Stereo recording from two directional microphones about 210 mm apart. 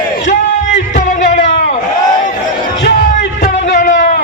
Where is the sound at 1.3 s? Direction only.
35° left (ahead or behind).